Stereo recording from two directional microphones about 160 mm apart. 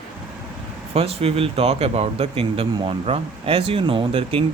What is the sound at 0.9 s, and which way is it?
Speech, 40° right (ahead or behind).